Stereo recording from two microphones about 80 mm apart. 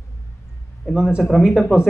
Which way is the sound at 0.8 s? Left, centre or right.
Centre.